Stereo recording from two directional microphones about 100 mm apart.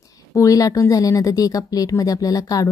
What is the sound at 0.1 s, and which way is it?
Speech, 35° left (ahead or behind).